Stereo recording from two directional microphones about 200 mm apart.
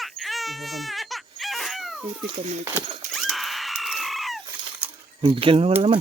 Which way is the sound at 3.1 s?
Centre (ahead or behind).